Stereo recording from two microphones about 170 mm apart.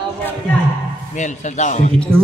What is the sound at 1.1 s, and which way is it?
Speech, 45° left (ahead or behind).